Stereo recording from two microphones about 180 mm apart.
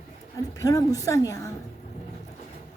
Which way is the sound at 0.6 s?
20° left (ahead or behind).